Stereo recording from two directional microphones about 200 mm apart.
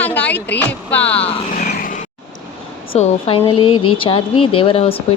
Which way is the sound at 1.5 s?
45° left (ahead or behind).